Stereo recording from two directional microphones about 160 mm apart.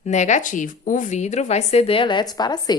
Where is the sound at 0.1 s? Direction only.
50° left (ahead or behind).